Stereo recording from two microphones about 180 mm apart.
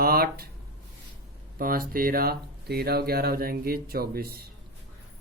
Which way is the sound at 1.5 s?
55° right (ahead or behind).